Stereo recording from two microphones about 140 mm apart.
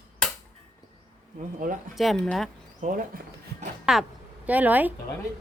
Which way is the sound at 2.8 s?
75° right (ahead or behind).